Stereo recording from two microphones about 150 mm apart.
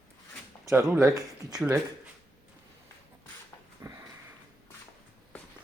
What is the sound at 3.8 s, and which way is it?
Sniff, 20° right (ahead or behind).